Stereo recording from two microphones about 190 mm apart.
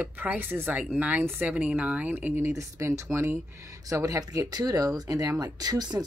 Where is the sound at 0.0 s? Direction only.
10° right (ahead or behind).